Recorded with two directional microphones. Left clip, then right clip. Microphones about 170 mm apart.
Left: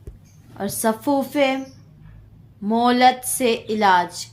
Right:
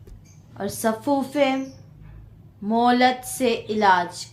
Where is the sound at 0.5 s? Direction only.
40° left (ahead or behind).